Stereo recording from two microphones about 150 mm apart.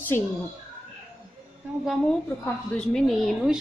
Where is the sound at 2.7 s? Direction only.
5° left (ahead or behind).